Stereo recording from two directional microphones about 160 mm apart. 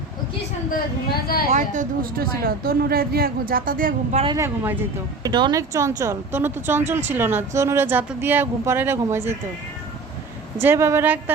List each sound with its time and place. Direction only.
1.1 s a woman's voice: 70° left (ahead or behind)
1.5 s a woman's voice: 50° right (ahead or behind)
4.4 s speech: 15° right (ahead or behind)
5.2 s speech: 25° right (ahead or behind)
10.6 s speech: 15° right (ahead or behind)